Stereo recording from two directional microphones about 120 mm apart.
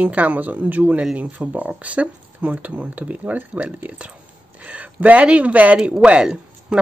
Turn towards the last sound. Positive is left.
turn(degrees=-5)  # may be behind; listen again after turning